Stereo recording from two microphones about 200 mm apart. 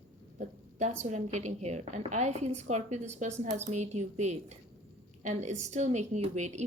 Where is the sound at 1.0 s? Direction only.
35° right (ahead or behind).